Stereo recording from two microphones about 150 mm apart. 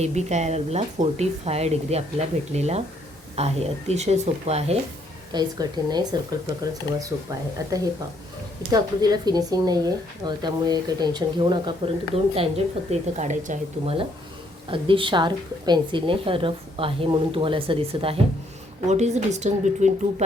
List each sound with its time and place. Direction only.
0.0 s speech: 50° right (ahead or behind)
5.3 s a woman's voice: 30° right (ahead or behind)
12.9 s speech: 50° right (ahead or behind)
14.7 s a woman's voice: 35° right (ahead or behind)
18.9 s speech: 50° right (ahead or behind)